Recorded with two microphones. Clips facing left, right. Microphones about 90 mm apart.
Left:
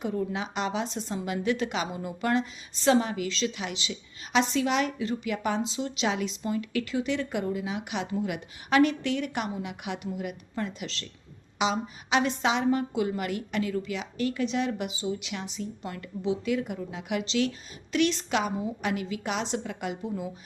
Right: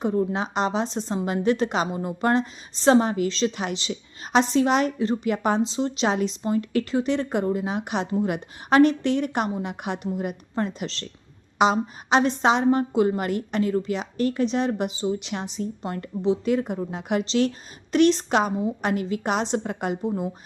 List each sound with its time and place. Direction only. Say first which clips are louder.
0.0 s speech: right 6 dB; 35° right (ahead or behind)